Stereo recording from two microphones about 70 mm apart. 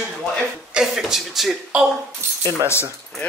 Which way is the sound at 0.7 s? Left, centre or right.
Centre.